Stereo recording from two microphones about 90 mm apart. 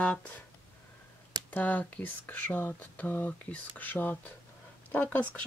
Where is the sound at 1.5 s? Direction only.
20° left (ahead or behind).